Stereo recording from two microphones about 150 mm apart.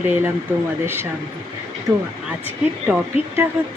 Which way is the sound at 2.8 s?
15° right (ahead or behind).